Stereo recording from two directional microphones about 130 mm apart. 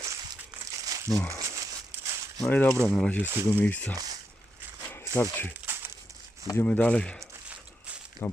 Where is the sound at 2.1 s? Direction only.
25° right (ahead or behind).